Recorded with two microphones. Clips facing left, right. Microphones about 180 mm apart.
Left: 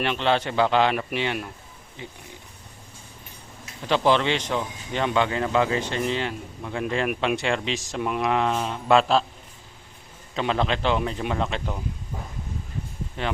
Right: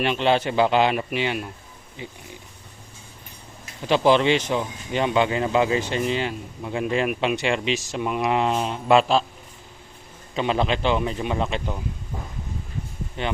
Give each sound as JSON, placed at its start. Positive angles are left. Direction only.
{"t": 0.0, "sound": "speech", "side_deg": -10}
{"t": 3.8, "sound": "a man's voice", "side_deg": -10}
{"t": 8.3, "sound": "speech", "side_deg": -15}
{"t": 10.3, "sound": "a man's voice", "side_deg": -5}
{"t": 13.2, "sound": "a man's voice", "side_deg": 0}